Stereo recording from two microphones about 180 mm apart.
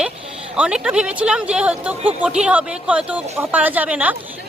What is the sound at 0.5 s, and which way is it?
Speech, 5° right (ahead or behind).